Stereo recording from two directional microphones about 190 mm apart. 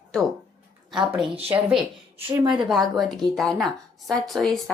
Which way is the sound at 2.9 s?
Centre (ahead or behind).